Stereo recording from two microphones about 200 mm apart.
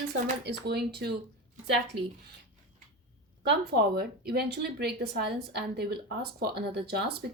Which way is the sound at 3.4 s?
50° right (ahead or behind).